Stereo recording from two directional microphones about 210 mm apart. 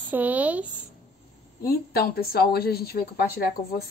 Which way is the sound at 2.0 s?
45° left (ahead or behind).